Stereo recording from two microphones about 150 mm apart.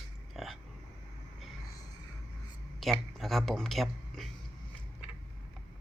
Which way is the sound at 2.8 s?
Centre (ahead or behind).